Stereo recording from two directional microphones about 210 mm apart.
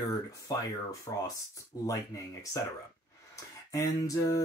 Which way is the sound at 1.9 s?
15° left (ahead or behind).